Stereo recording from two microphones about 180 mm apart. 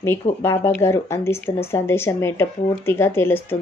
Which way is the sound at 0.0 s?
15° left (ahead or behind).